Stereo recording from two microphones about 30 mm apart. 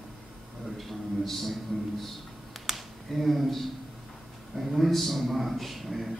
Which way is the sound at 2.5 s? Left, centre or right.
Centre.